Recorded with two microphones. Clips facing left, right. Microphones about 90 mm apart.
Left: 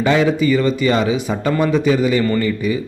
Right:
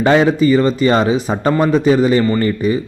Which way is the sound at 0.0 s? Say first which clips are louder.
Right 3 dB; 40° right (ahead or behind).